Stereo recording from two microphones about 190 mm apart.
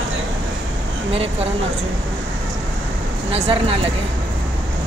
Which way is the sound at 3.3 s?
30° right (ahead or behind).